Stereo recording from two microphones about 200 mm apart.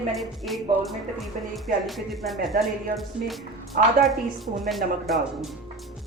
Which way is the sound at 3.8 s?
45° right (ahead or behind).